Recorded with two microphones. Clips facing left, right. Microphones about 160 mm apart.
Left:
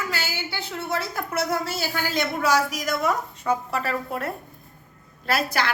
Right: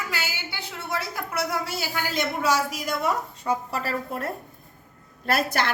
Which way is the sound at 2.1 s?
25° right (ahead or behind).